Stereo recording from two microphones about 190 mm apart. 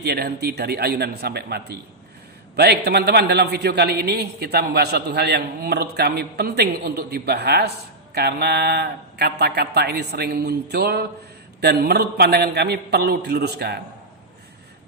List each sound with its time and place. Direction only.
0.0 s a man's voice: 55° right (ahead or behind)